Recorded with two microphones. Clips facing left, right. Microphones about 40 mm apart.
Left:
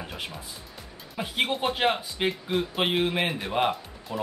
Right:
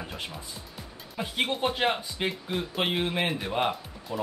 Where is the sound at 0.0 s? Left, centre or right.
Centre.